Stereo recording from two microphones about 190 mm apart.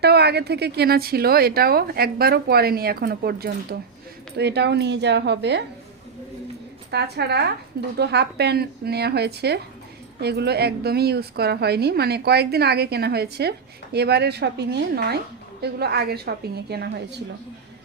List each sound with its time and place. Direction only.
0.0 s a woman's voice: 60° right (ahead or behind)
6.9 s a woman's voice: 60° right (ahead or behind)